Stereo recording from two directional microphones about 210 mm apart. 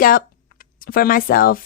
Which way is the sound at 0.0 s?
40° left (ahead or behind).